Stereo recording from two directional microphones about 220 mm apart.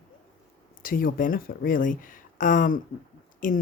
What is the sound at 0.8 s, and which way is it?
A woman's voice, 40° left (ahead or behind).